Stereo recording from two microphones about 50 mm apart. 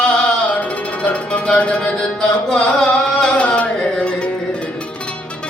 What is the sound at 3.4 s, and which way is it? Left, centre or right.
Music, left.